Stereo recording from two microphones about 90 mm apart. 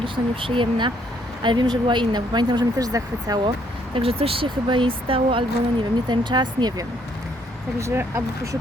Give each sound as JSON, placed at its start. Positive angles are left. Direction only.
{"t": 0.0, "sound": "speech", "side_deg": -75}
{"t": 2.7, "sound": "speech", "side_deg": -40}
{"t": 3.9, "sound": "speech", "side_deg": -90}
{"t": 6.1, "sound": "speech", "side_deg": -60}
{"t": 7.8, "sound": "speech", "side_deg": -30}